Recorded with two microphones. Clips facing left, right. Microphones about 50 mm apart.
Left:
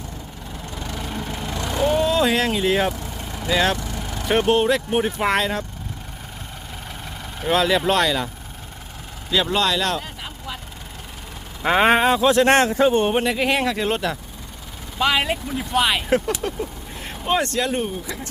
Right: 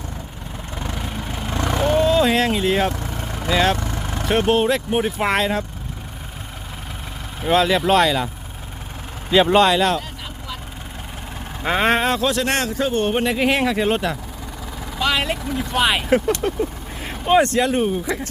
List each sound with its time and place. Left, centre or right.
0.8 s vehicle: right
1.5 s vehicle: right
1.9 s speech: centre
3.8 s vehicle: right
4.3 s speech: centre
7.4 s speech: centre
9.3 s speech: right
9.7 s speech: centre
11.6 s speech: centre
12.2 s speech: left
13.1 s speech: centre
14.9 s speech: centre
16.4 s vehicle: centre
18.0 s speech: right